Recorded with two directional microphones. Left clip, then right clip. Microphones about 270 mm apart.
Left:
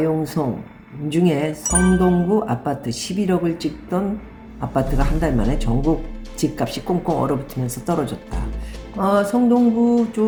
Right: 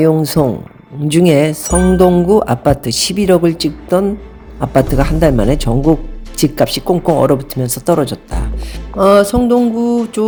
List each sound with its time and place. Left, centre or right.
0.0 s speech: right
1.6 s music: centre
2.0 s speech: right